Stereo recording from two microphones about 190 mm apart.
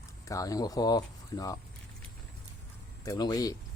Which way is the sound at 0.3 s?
20° left (ahead or behind).